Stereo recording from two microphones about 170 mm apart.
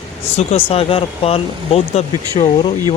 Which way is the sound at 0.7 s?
35° left (ahead or behind).